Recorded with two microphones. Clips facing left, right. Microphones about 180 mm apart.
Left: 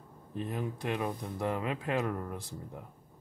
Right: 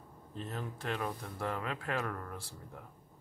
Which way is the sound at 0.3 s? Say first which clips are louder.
Left 6 dB; 15° left (ahead or behind).